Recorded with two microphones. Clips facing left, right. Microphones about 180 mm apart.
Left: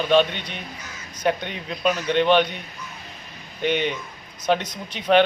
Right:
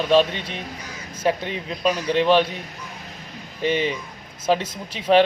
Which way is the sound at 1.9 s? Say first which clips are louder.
Even; 30° right (ahead or behind).